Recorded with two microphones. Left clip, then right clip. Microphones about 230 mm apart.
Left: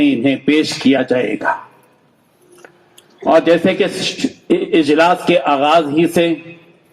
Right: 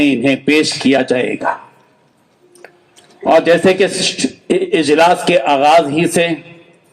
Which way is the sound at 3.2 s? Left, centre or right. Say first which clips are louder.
Right 1 dB; right.